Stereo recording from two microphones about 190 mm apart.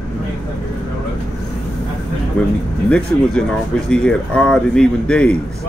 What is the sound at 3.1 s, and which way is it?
A man's voice, 10° left (ahead or behind).